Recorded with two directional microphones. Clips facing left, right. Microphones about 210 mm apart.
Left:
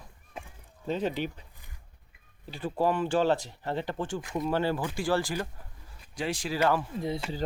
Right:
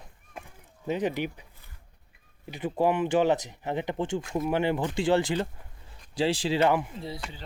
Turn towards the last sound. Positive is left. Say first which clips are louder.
# left 5 dB
turn(degrees=20)  # may be behind; listen again after turning